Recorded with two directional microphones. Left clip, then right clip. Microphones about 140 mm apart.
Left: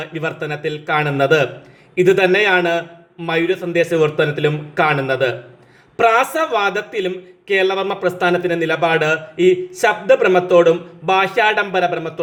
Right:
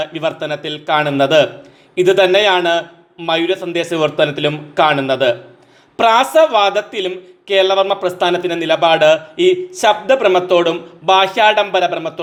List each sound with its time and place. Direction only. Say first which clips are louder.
0.0 s speech: right 4 dB; 25° right (ahead or behind)